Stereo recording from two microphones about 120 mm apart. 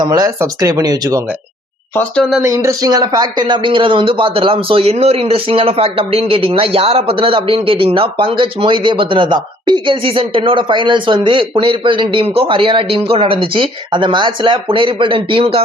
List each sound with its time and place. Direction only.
0.0 s speech: 30° right (ahead or behind)
2.4 s speech: 25° right (ahead or behind); by 15.6 s 50° right (ahead or behind)